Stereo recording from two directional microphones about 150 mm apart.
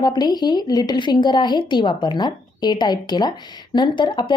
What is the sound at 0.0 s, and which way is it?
A woman's voice, 30° left (ahead or behind).